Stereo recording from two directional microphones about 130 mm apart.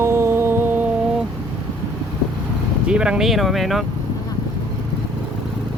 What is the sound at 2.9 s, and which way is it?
Speech, 5° right (ahead or behind).